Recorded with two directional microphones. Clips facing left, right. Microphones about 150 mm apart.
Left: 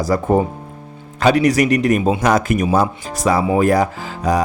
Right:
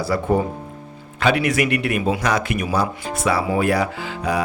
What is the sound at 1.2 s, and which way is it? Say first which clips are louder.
Speech: left 5 dB; 40° left (ahead or behind).